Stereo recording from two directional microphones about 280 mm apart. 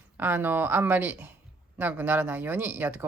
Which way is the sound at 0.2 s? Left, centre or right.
Centre.